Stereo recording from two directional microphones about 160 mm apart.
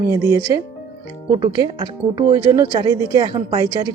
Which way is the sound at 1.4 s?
30° right (ahead or behind).